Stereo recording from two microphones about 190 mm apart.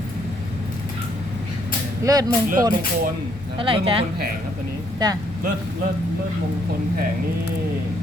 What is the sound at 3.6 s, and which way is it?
Speech, 30° right (ahead or behind).